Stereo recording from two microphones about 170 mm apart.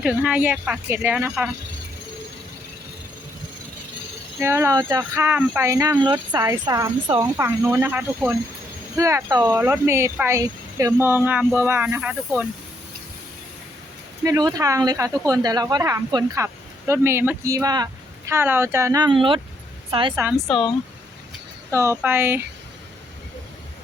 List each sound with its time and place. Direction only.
0.0 s a woman's voice: 5° right (ahead or behind)
4.4 s a woman's voice: 15° right (ahead or behind)
14.3 s a woman's voice: 20° right (ahead or behind)
20.5 s speech: 25° left (ahead or behind)
21.7 s a woman's voice: 15° right (ahead or behind)